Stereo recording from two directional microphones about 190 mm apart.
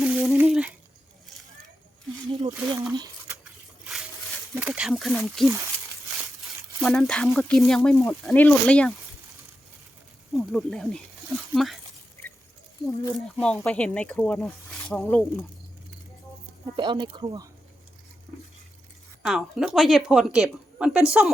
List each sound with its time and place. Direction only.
0.0 s a sound: 5° right (ahead or behind)
2.5 s speech: 15° right (ahead or behind)
2.9 s a sound: 20° right (ahead or behind)
4.5 s speech: 5° right (ahead or behind)
6.8 s speech: centre (ahead or behind)
10.3 s speech: centre (ahead or behind)
13.1 s speech: 5° left (ahead or behind)
16.7 s speech: 25° right (ahead or behind)
19.2 s speech: centre (ahead or behind)